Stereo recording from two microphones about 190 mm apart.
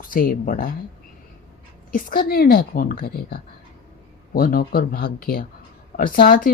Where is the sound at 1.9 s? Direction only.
50° left (ahead or behind).